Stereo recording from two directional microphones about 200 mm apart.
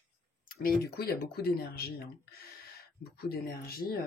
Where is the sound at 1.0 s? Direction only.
50° left (ahead or behind).